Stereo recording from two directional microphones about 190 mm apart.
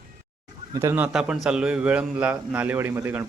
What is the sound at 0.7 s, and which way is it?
A man's voice, 15° right (ahead or behind).